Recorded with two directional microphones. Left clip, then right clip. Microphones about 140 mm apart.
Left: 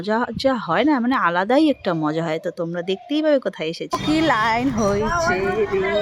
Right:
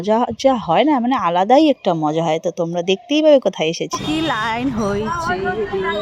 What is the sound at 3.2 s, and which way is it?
Speech, 15° right (ahead or behind).